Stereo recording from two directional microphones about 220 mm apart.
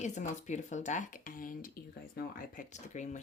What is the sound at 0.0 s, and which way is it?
Speech, 35° left (ahead or behind).